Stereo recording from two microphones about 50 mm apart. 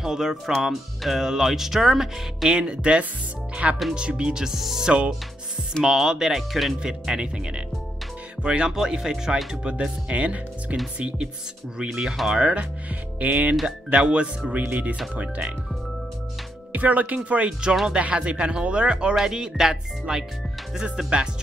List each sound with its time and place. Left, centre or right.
0.0 s speech: centre
6.8 s speech: centre
8.4 s music: right
8.6 s speech: centre
11.8 s speech: centre; by 13.6 s right
13.7 s speech: centre
16.7 s speech: right
17.5 s speech: centre